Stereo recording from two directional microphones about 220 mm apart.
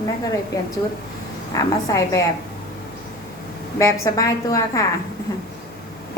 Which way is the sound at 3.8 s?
15° left (ahead or behind).